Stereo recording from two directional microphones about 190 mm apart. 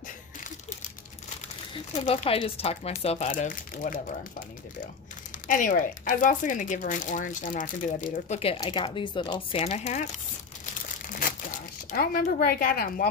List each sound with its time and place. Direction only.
1.7 s speech: 30° left (ahead or behind)
5.5 s speech: 45° left (ahead or behind)
8.5 s a sound: 25° left (ahead or behind); by 11.3 s 45° left (ahead or behind)
11.9 s speech: 50° left (ahead or behind)